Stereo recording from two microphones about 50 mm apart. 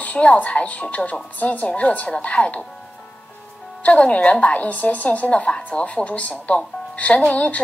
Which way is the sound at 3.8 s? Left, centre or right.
Left.